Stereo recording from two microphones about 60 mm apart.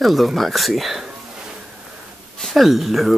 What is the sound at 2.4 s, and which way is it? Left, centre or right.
Speech, centre.